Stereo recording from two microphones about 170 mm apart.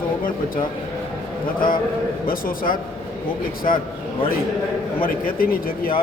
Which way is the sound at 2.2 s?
55° left (ahead or behind).